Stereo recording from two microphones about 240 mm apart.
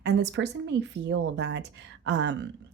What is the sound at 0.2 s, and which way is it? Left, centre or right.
Speech, right.